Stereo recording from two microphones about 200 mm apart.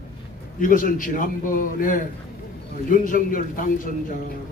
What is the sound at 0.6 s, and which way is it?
A man's voice, 45° left (ahead or behind).